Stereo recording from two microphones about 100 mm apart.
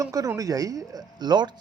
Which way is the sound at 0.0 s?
35° right (ahead or behind).